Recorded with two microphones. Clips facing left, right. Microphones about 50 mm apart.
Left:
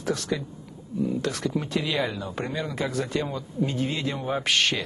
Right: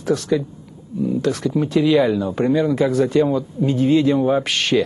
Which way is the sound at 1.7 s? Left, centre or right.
Centre.